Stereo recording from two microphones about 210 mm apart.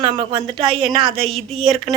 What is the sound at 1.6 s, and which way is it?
Speech, centre (ahead or behind).